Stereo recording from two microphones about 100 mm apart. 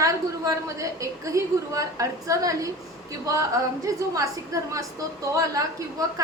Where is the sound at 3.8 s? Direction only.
35° right (ahead or behind).